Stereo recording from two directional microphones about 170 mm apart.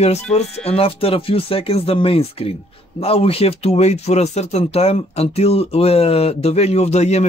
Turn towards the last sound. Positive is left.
turn(degrees=40)  # may be behind; listen again after turning